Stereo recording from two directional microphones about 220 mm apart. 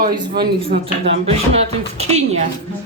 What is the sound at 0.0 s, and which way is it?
Speech, 40° right (ahead or behind).